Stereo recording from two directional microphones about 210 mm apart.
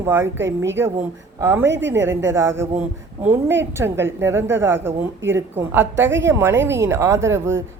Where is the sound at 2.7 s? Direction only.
30° right (ahead or behind).